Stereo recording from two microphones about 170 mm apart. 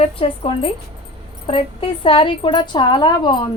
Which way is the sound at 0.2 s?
30° left (ahead or behind).